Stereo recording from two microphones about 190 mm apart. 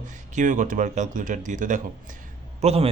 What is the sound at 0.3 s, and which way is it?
Speech, 45° right (ahead or behind).